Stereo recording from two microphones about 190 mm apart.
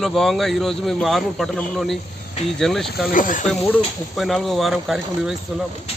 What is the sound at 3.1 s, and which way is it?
Speech, 45° left (ahead or behind).